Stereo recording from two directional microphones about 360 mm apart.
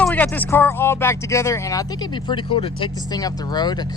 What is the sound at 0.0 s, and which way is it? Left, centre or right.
Speech, centre.